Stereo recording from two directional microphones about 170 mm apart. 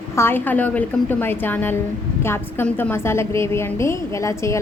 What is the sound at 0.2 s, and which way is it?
A woman's voice, 10° left (ahead or behind).